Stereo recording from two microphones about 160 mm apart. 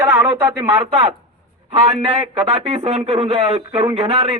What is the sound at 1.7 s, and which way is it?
A man's voice, 40° right (ahead or behind).